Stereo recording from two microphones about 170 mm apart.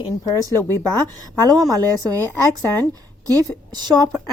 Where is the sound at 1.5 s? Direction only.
20° right (ahead or behind).